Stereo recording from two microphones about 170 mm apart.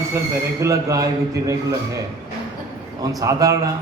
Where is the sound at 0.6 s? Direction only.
20° right (ahead or behind).